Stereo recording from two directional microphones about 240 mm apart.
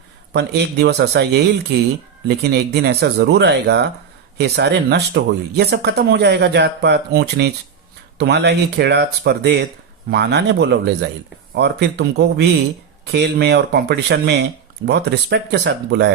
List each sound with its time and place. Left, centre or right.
0.3 s speech: right